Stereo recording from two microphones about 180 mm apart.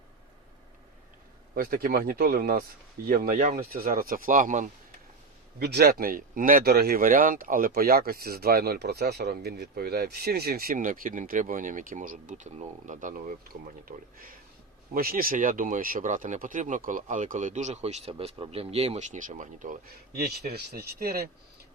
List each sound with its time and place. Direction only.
1.5 s speech: 55° right (ahead or behind)
5.5 s speech: 60° right (ahead or behind)